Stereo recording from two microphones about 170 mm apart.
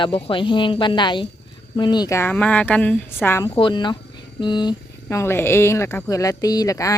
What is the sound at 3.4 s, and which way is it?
A woman's voice, 30° left (ahead or behind).